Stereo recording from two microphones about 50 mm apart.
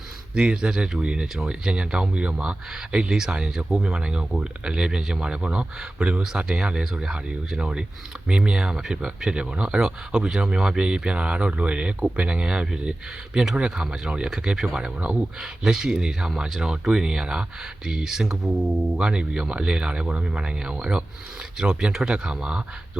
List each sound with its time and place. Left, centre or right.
0.3 s speech: centre
3.7 s speech: centre
3.9 s speech: centre
12.4 s speech: centre